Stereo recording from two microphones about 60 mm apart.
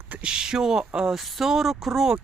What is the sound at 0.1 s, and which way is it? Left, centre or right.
Speech, centre.